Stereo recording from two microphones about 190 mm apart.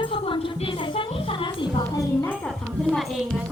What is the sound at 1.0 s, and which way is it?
Music, 25° left (ahead or behind).